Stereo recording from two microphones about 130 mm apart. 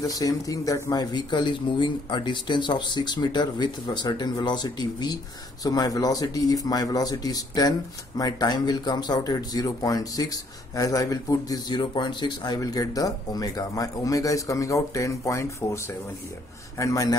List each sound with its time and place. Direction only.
0.0 s speech: 30° left (ahead or behind)